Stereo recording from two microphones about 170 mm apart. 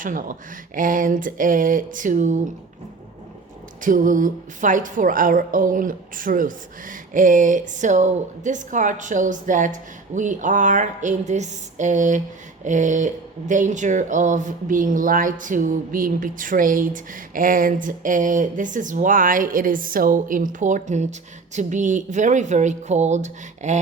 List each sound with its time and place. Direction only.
0.0 s speech: 55° right (ahead or behind)
3.8 s speech: 50° right (ahead or behind)